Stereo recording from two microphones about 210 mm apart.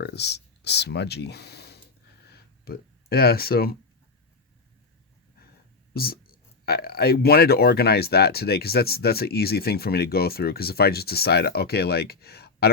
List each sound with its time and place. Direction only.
0.0 s speech: 55° left (ahead or behind)
2.3 s a sound: 45° left (ahead or behind)
5.9 s speech: 45° left (ahead or behind)